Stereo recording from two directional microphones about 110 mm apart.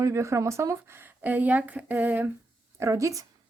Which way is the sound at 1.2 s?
15° right (ahead or behind).